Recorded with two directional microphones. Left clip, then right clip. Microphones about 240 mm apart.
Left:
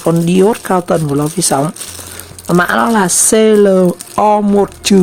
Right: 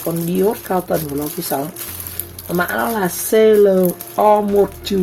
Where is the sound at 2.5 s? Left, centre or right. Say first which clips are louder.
Left 8 dB; left.